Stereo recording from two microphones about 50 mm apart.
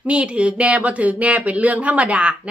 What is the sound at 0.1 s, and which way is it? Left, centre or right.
Speech, right.